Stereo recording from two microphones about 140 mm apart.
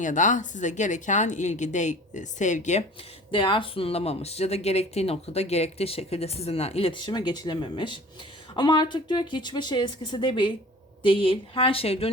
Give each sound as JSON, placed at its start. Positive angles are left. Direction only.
{"t": 0.0, "sound": "a woman's voice", "side_deg": 65}
{"t": 3.3, "sound": "speech", "side_deg": 40}